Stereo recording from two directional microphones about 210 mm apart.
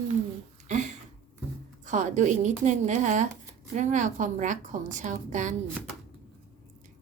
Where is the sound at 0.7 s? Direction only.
35° right (ahead or behind).